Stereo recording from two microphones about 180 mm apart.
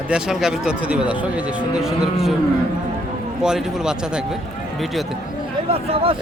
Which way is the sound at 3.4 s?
5° right (ahead or behind).